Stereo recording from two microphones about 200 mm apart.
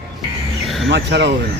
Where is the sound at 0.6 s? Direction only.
Centre (ahead or behind).